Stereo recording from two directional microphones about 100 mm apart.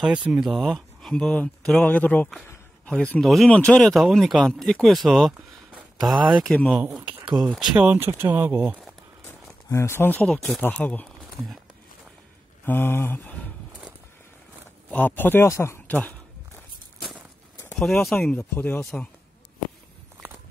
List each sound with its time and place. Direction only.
0.0 s speech: 10° right (ahead or behind); by 3.9 s 10° left (ahead or behind)
3.9 s speech: centre (ahead or behind)
6.4 s speech: 15° left (ahead or behind)
6.7 s speech: 15° right (ahead or behind)
9.3 s a sound: 30° left (ahead or behind)
10.2 s speech: 5° left (ahead or behind)
12.6 s speech: 20° left (ahead or behind)
14.9 s speech: 15° left (ahead or behind)
17.7 s speech: centre (ahead or behind)
18.4 s speech: 15° left (ahead or behind)